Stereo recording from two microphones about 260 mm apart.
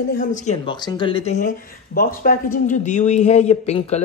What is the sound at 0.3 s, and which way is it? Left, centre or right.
A man's voice, left.